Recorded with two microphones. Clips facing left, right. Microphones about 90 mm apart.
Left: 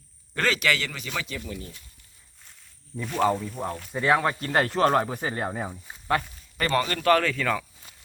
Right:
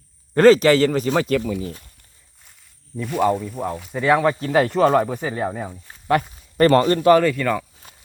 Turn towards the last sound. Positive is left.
turn(degrees=-5)  # may be behind; listen again after turning